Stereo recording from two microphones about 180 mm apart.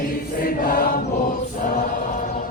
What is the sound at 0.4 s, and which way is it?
Choir, 50° left (ahead or behind).